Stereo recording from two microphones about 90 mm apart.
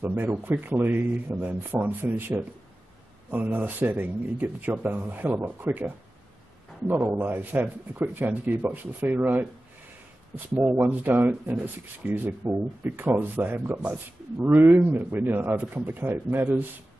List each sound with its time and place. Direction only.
0.0 s speech: 25° right (ahead or behind)